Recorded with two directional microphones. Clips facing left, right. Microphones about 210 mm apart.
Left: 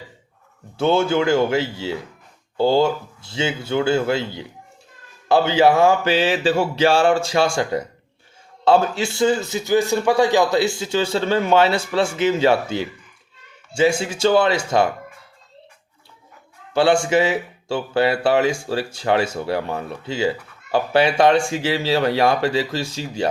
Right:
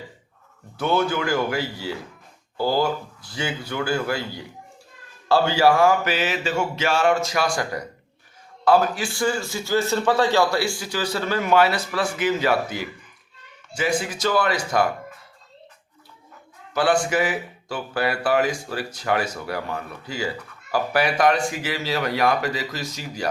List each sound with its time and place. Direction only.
0.8 s speech: 25° left (ahead or behind)
16.7 s speech: 25° left (ahead or behind)